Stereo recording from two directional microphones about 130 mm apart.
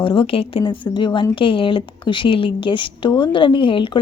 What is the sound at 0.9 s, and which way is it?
A woman's voice, 35° left (ahead or behind).